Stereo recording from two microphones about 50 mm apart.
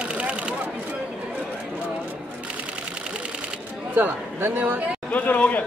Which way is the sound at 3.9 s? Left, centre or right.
Right.